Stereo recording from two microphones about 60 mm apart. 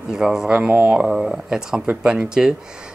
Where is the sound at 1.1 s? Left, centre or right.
Centre.